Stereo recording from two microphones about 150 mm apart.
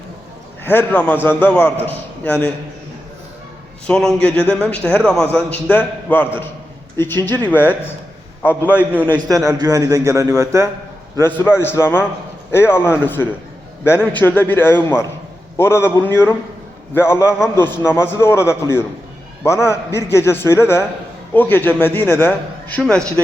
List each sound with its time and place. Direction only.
0.6 s a man's voice: 15° left (ahead or behind)
3.8 s a man's voice: 5° left (ahead or behind)
8.6 s a man's voice: 10° right (ahead or behind)
9.3 s a man's voice: 25° right (ahead or behind)
11.2 s a man's voice: 15° left (ahead or behind)